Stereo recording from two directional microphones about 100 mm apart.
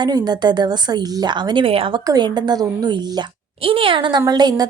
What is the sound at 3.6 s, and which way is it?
Speech, 65° right (ahead or behind).